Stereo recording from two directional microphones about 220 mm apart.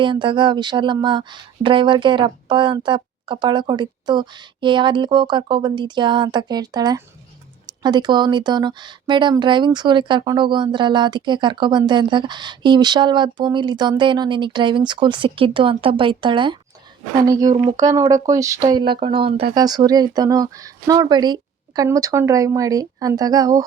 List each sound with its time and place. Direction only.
0.0 s speech: 20° right (ahead or behind)